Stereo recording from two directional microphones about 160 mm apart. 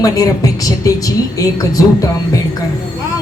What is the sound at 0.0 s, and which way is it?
Speech, 20° left (ahead or behind).